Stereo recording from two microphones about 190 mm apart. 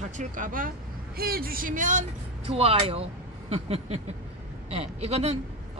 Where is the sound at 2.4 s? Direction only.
30° right (ahead or behind).